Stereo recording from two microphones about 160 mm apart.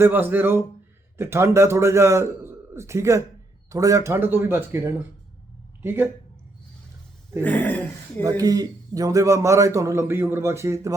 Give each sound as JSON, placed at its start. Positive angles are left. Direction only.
{"t": 0.0, "sound": "a man's voice", "side_deg": -10}
{"t": 7.4, "sound": "a sound", "side_deg": 10}
{"t": 8.2, "sound": "a man's voice", "side_deg": -20}